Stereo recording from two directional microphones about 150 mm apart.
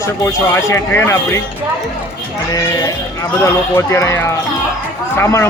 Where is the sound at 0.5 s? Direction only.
20° left (ahead or behind).